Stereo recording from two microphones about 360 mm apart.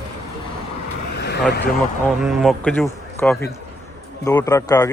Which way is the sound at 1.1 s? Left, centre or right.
Left.